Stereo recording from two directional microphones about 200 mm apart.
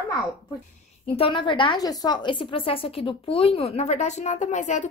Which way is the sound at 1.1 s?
25° left (ahead or behind).